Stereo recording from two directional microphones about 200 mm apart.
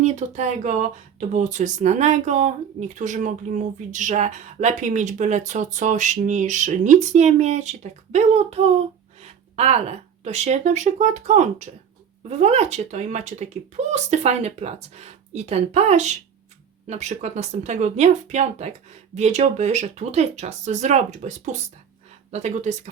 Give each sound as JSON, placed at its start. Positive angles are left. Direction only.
{"t": 0.0, "sound": "speech", "side_deg": -35}